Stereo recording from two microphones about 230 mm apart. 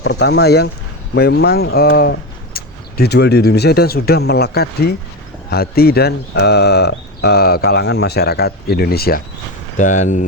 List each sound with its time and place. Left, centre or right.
0.0 s speech: left